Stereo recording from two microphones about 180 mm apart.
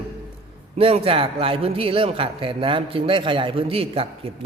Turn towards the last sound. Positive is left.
turn(degrees=-30)  # may be behind; listen again after turning